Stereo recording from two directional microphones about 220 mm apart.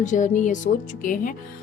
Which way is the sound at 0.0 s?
35° left (ahead or behind).